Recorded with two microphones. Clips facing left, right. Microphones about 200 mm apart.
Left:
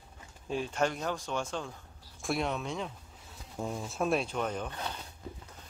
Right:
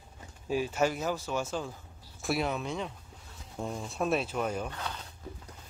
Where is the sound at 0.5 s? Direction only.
5° right (ahead or behind).